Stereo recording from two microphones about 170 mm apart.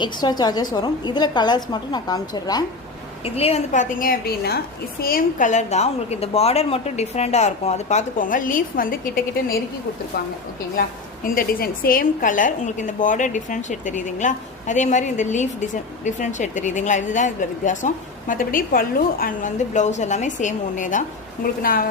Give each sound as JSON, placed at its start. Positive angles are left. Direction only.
{"t": 0.0, "sound": "a woman's voice", "side_deg": 25}
{"t": 3.2, "sound": "a woman's voice", "side_deg": 35}
{"t": 10.8, "sound": "a woman's voice", "side_deg": 60}